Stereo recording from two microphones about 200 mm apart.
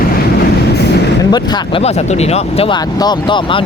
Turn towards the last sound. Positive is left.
turn(degrees=25)  # may be behind; listen again after turning